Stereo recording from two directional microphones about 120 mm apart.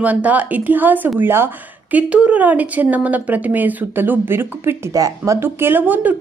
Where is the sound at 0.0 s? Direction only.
10° right (ahead or behind).